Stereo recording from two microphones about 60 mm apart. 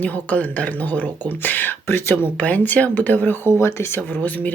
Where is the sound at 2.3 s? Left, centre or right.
Left.